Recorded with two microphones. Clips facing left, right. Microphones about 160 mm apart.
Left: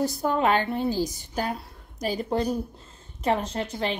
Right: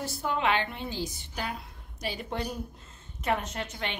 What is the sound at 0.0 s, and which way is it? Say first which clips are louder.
A woman's voice: left 6 dB; 40° left (ahead or behind).